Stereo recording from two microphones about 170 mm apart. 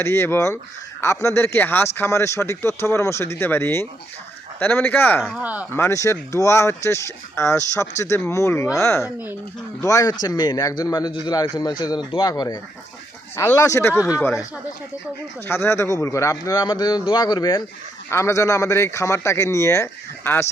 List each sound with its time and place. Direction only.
0.0 s speech: 15° left (ahead or behind)
5.2 s speech: 5° right (ahead or behind)
5.7 s a man's voice: 15° left (ahead or behind)
15.4 s a man's voice: 15° left (ahead or behind)